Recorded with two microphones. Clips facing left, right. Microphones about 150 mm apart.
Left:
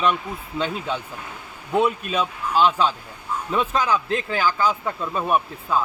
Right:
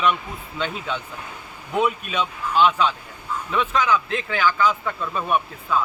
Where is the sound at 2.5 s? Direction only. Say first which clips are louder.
Even; 35° left (ahead or behind).